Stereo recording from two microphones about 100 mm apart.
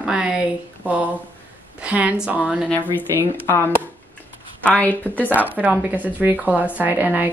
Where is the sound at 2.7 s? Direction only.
15° left (ahead or behind).